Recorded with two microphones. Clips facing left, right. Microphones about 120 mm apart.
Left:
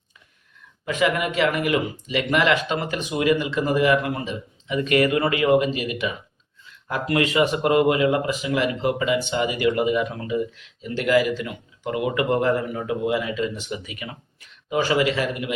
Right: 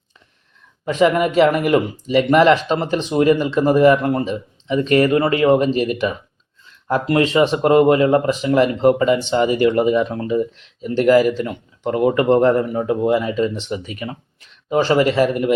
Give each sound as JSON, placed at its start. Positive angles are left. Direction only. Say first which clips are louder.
{"t": 0.9, "sound": "speech", "louder": "right 7 dB", "side_deg": -35}
{"t": 15.0, "sound": "a man's voice", "louder": "right 8 dB", "side_deg": -45}